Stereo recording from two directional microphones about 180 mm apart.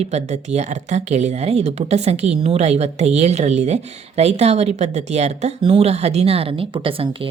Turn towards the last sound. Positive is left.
turn(degrees=-30)  # may be behind; listen again after turning